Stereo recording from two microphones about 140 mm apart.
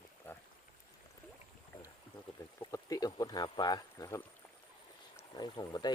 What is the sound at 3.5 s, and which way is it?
Speech, 30° left (ahead or behind).